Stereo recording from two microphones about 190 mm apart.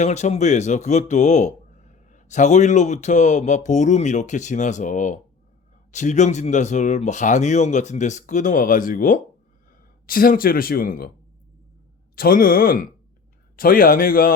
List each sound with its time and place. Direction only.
0.0 s speech: 35° left (ahead or behind)
12.1 s speech: 50° left (ahead or behind)